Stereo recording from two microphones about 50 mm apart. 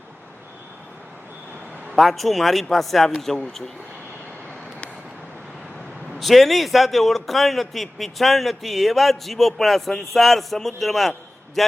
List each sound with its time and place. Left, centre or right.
2.0 s a man's voice: centre
6.1 s a man's voice: centre